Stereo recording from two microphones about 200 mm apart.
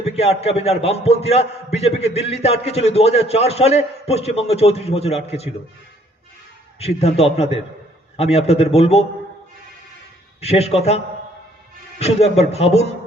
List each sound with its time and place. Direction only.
0.0 s a man's voice: 30° left (ahead or behind)
6.7 s a man's voice: 30° left (ahead or behind)
10.4 s a man's voice: 30° left (ahead or behind)